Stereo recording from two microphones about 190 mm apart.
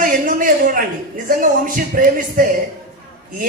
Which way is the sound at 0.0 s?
45° right (ahead or behind).